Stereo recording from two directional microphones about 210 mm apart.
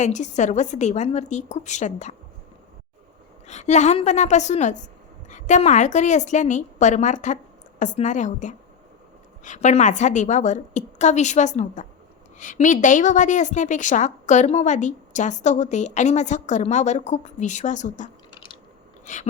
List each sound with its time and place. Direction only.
0.0 s a woman's voice: 35° left (ahead or behind)
3.4 s a woman's voice: 35° left (ahead or behind)
19.0 s a sound: 35° left (ahead or behind)